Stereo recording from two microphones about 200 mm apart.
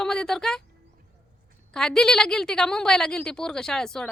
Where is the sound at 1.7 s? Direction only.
5° left (ahead or behind).